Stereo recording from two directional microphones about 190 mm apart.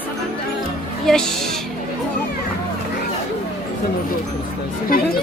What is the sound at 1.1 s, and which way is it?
Speech, centre (ahead or behind).